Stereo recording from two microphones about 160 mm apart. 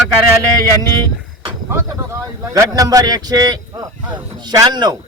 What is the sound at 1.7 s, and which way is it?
Speech, 20° right (ahead or behind).